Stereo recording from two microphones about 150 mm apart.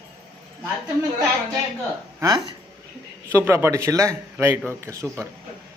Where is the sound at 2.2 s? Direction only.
25° right (ahead or behind).